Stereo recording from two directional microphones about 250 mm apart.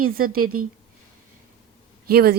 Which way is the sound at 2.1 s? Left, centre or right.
Right.